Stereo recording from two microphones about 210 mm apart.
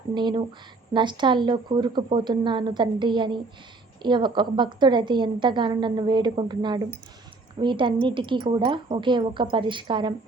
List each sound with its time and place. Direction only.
0.1 s a woman's voice: 20° right (ahead or behind)